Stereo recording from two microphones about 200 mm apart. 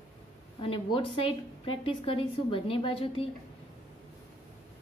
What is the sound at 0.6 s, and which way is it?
A woman's voice, 25° left (ahead or behind).